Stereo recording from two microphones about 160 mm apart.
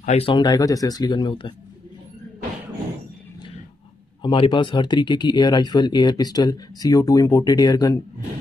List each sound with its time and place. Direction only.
0.0 s speech: 40° left (ahead or behind)
4.2 s speech: 30° left (ahead or behind)